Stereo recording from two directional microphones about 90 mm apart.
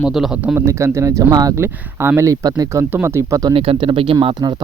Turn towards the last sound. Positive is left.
turn(degrees=-85)